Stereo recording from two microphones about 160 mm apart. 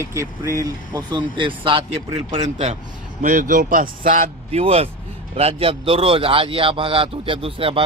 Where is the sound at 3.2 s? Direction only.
55° right (ahead or behind).